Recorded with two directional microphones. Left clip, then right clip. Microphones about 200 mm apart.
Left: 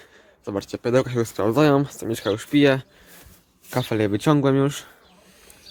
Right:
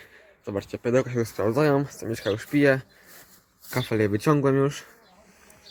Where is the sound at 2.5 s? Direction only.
20° left (ahead or behind).